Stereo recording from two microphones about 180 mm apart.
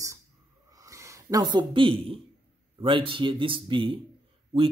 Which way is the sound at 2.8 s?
30° right (ahead or behind).